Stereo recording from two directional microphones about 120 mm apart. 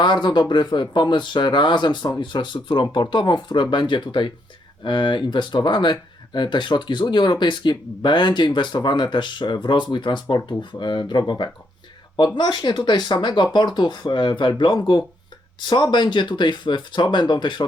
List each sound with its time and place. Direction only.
0.0 s speech: 40° left (ahead or behind)